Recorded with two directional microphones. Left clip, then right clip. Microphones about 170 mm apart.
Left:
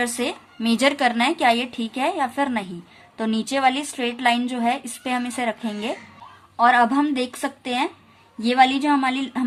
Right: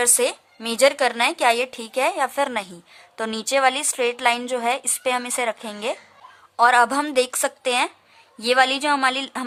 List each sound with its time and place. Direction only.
0.0 s a woman's voice: 40° right (ahead or behind)
6.6 s a woman's voice: 50° right (ahead or behind)